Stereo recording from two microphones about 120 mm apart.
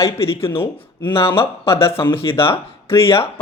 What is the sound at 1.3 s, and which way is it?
A man's voice, 20° left (ahead or behind).